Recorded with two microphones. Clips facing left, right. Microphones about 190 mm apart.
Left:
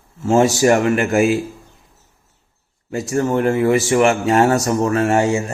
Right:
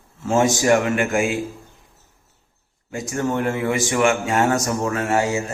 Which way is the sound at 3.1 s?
35° left (ahead or behind).